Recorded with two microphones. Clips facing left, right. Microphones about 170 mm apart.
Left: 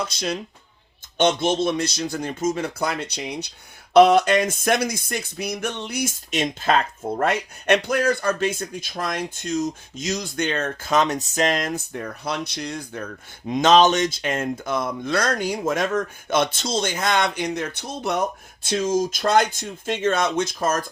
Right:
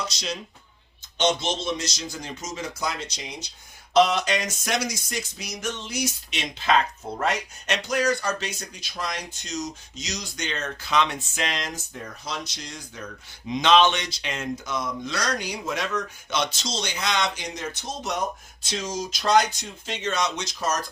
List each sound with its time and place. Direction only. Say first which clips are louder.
0.0 s speech: left 5 dB; 55° left (ahead or behind)
13.5 s speech: left 4 dB; 45° left (ahead or behind)